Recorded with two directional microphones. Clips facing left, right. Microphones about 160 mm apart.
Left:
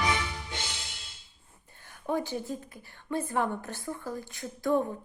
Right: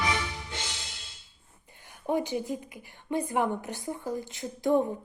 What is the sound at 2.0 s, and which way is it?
A woman's voice, 20° right (ahead or behind).